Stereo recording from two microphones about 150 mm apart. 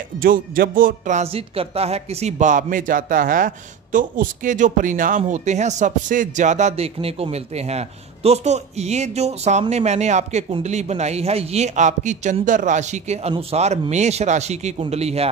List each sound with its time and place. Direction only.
0.2 s speech: 70° right (ahead or behind); by 15.2 s 45° right (ahead or behind)